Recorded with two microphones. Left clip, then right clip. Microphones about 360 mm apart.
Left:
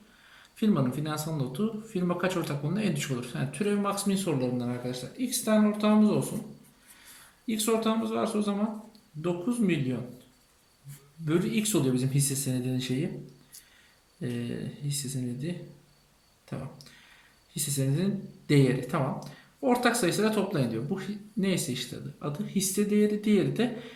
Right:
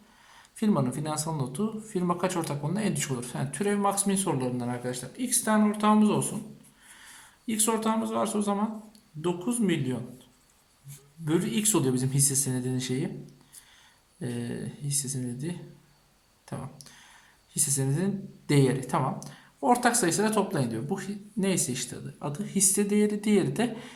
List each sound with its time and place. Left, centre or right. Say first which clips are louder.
0.5 s speech: even; centre
7.4 s speech: even; centre
11.3 s speech: right 1 dB; centre
14.2 s speech: even; centre
16.5 s a sound: right 1 dB; centre
17.5 s speech: right 1 dB; centre